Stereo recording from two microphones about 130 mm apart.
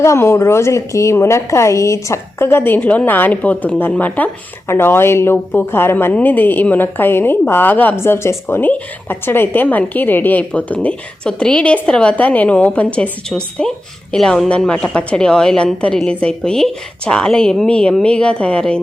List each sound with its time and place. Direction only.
0.0 s a woman's voice: 20° left (ahead or behind)